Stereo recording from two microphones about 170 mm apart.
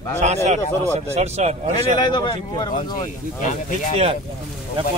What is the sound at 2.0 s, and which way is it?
Speech, 25° left (ahead or behind).